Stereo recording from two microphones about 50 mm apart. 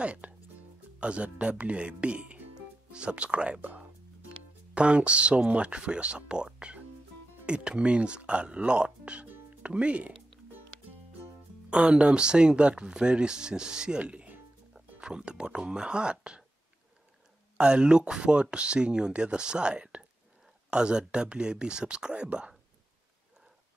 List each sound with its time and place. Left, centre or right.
0.0 s speech: right
4.7 s speech: right
11.7 s speech: right
17.6 s speech: centre